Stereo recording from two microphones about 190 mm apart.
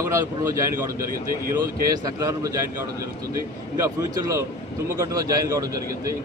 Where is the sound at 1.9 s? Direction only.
20° right (ahead or behind).